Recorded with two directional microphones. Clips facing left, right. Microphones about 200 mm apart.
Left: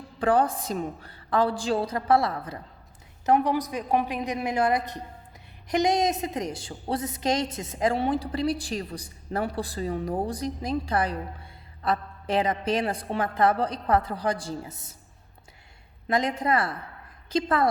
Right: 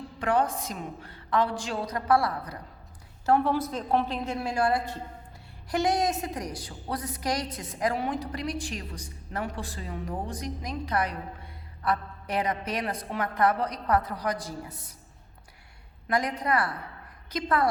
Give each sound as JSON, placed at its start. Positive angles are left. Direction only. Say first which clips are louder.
{"t": 0.2, "sound": "a woman's voice", "louder": "left 3 dB", "side_deg": 30}
{"t": 16.0, "sound": "a woman's voice", "louder": "left 3 dB", "side_deg": 25}